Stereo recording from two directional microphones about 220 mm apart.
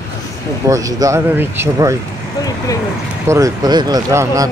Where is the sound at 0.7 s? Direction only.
15° right (ahead or behind).